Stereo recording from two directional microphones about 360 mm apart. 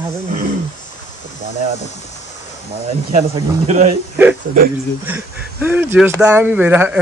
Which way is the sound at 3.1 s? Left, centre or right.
Centre.